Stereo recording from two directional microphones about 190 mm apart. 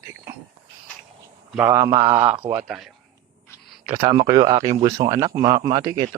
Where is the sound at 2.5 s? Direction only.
5° right (ahead or behind).